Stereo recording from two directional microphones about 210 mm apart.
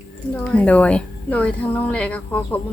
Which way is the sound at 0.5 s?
5° left (ahead or behind).